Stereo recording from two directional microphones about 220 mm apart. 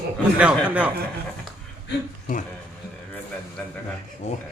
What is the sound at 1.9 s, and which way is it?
Speech, 50° left (ahead or behind).